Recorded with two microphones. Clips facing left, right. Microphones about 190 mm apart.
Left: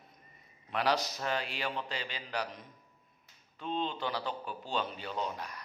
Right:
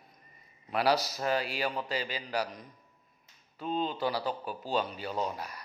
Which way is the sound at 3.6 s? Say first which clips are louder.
Right 3 dB; 5° right (ahead or behind).